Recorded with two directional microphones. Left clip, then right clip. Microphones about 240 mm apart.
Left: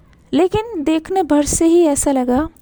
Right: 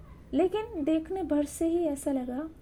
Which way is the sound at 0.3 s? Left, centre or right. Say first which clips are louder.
Left 12 dB; left.